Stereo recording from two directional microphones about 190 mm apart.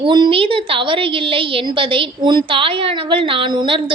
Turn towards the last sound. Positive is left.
turn(degrees=-25)  # may be behind; listen again after turning